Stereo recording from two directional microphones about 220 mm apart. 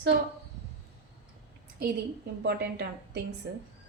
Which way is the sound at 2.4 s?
50° right (ahead or behind).